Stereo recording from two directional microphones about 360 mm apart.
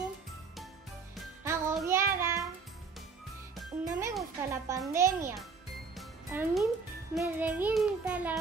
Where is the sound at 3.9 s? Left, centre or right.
Centre.